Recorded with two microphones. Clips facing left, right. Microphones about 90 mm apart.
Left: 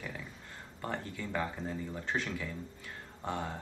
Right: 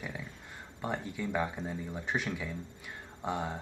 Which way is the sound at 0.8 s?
15° right (ahead or behind).